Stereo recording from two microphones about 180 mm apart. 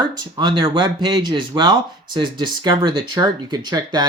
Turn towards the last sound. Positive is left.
turn(degrees=-25)  # may be behind; listen again after turning